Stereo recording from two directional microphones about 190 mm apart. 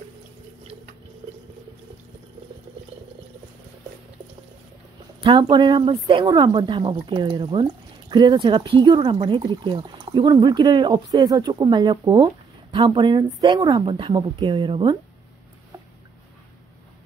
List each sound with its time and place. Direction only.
5.2 s speech: 25° right (ahead or behind)